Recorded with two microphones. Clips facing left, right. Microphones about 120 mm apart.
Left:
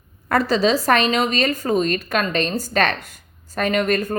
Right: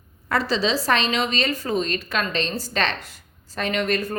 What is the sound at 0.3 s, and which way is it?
A woman's voice, 50° left (ahead or behind).